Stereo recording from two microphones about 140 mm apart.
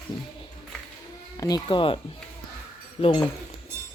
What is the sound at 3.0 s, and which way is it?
Speech, 45° left (ahead or behind).